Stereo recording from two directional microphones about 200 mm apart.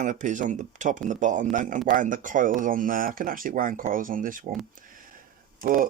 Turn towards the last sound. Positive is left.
turn(degrees=-45)  # may be behind; listen again after turning